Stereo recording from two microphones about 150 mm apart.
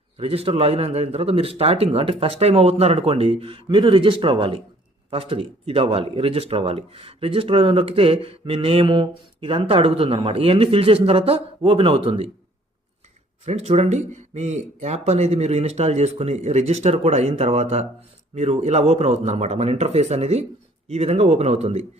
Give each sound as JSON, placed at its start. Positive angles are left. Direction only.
{"t": 0.2, "sound": "speech", "side_deg": -40}
{"t": 13.4, "sound": "speech", "side_deg": -45}